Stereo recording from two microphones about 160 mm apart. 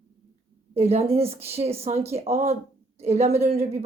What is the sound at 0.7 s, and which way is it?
A woman's voice, 40° right (ahead or behind).